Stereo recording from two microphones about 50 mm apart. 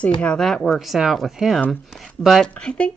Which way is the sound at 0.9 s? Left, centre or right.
Centre.